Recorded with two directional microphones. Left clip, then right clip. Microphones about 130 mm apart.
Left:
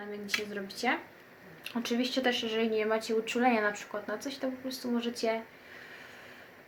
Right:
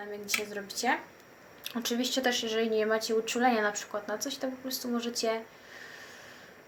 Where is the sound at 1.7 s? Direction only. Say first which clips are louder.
Right 1 dB; 15° left (ahead or behind).